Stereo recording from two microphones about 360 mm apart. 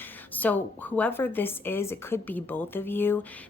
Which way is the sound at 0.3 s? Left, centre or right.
Centre.